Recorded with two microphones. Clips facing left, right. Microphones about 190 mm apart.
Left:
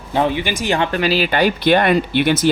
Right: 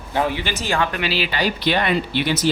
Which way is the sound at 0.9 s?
40° left (ahead or behind).